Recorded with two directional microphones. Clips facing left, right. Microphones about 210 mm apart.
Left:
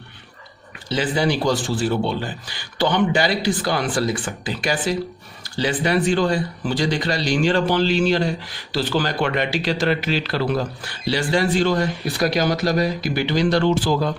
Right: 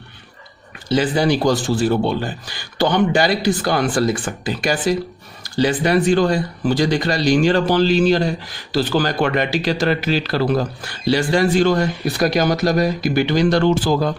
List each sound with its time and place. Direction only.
0.9 s speech: 45° right (ahead or behind)